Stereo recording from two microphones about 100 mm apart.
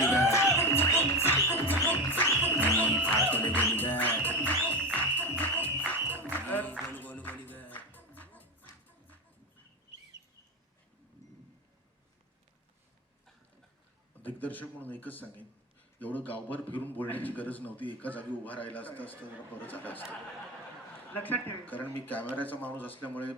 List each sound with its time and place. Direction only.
0.1 s music: 30° left (ahead or behind)
14.2 s a man's voice: 15° left (ahead or behind)